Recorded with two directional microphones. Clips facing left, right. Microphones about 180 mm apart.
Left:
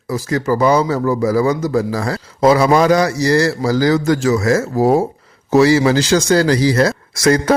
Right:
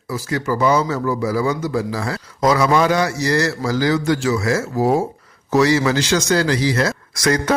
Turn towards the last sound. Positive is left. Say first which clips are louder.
# left 5 dB
turn(degrees=30)  # may be behind; listen again after turning